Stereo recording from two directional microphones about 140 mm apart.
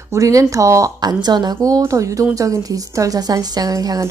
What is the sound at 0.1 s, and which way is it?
Speech, 25° right (ahead or behind).